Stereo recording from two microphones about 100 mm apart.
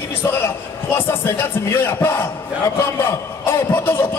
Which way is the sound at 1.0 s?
20° left (ahead or behind).